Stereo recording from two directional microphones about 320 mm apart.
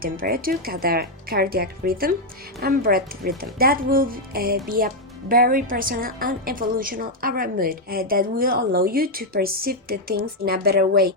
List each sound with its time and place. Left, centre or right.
0.0 s a woman's voice: right